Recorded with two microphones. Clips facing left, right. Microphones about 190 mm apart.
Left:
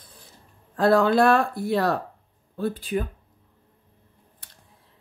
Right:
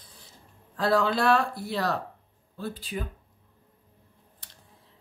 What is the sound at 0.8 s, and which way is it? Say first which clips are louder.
Speech: left 6 dB; 50° left (ahead or behind).